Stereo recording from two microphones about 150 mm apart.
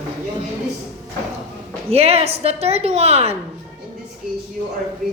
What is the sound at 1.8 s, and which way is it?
A woman's voice, 40° right (ahead or behind).